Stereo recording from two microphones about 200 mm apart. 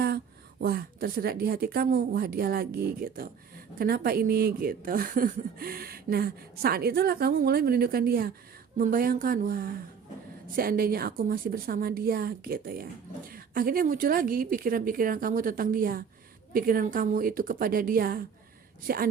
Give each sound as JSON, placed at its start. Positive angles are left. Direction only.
{"t": 0.6, "sound": "speech", "side_deg": -50}